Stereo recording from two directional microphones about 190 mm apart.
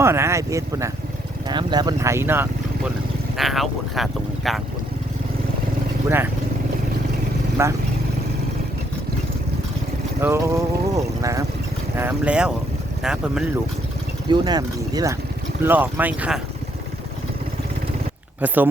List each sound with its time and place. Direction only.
0.0 s speech: 15° right (ahead or behind)
3.3 s speech: centre (ahead or behind)
7.6 s speech: 15° right (ahead or behind)
10.2 s speech: 15° right (ahead or behind)
14.3 s speech: 20° right (ahead or behind)
15.6 s speech: 10° right (ahead or behind)
18.3 s speech: 10° right (ahead or behind)